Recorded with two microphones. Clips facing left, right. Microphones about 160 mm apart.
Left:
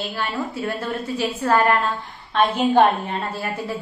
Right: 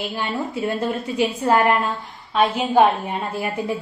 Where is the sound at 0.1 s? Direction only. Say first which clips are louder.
Right 1 dB; 20° right (ahead or behind).